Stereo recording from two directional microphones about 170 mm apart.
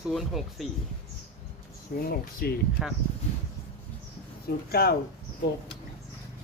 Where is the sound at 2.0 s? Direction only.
65° left (ahead or behind).